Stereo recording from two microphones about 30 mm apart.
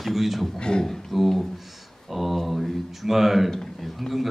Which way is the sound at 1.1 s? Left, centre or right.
Centre.